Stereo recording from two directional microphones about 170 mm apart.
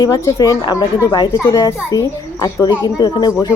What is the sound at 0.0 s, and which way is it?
Speech, 20° left (ahead or behind).